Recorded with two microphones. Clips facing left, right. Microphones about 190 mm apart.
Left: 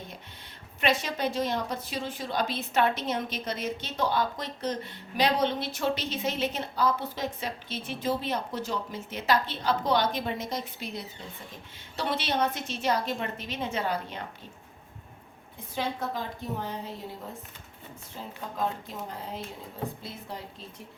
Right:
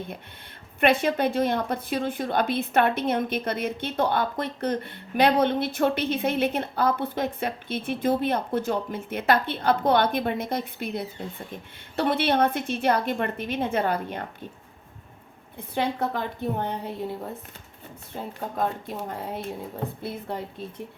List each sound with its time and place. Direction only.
0.8 s a woman's voice: 55° right (ahead or behind)
15.5 s a woman's voice: 60° right (ahead or behind)
18.1 s a woman's voice: 60° right (ahead or behind)